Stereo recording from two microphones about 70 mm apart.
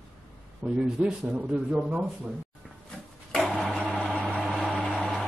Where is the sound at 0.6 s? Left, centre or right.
Centre.